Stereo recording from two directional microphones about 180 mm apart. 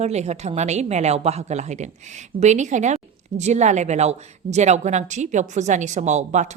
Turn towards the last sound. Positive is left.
turn(degrees=-40)  # may be behind; listen again after turning